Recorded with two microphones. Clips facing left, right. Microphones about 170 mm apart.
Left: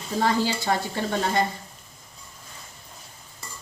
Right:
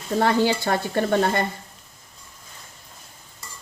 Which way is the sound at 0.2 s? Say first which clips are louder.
Right 3 dB; 60° right (ahead or behind).